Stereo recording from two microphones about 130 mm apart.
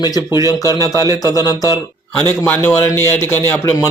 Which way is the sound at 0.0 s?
30° left (ahead or behind).